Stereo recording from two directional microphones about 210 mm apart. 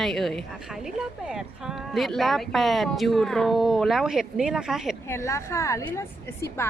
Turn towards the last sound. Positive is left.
turn(degrees=10)  # may be behind; listen again after turning